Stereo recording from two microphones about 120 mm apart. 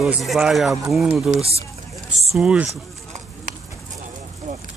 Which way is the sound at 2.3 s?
10° right (ahead or behind).